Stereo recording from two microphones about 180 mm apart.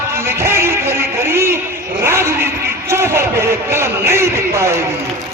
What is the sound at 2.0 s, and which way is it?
Vehicle, 15° right (ahead or behind).